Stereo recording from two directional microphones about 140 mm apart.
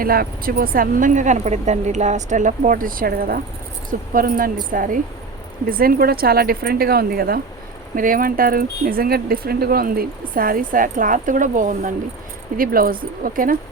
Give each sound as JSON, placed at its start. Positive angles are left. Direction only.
{"t": 0.0, "sound": "speech", "side_deg": -90}
{"t": 5.6, "sound": "speech", "side_deg": -90}
{"t": 12.5, "sound": "speech", "side_deg": -90}